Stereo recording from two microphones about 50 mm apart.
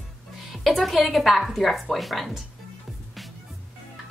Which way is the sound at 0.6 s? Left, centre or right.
Centre.